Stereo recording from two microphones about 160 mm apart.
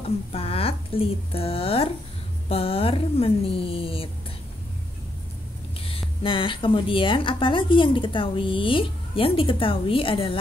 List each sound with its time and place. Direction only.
0.3 s speech: 35° left (ahead or behind)
5.8 s speech: 35° left (ahead or behind)